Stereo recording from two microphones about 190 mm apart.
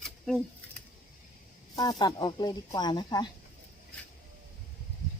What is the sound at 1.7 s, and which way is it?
Speech, 20° left (ahead or behind).